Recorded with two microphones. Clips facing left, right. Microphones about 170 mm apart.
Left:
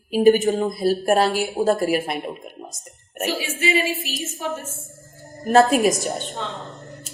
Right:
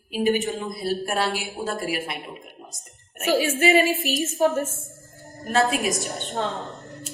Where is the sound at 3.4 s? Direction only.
45° right (ahead or behind).